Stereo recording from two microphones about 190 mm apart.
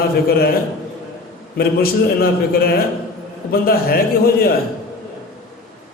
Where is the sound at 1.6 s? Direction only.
55° left (ahead or behind).